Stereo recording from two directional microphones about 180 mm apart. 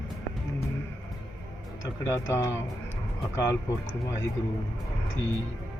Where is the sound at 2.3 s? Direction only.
15° left (ahead or behind).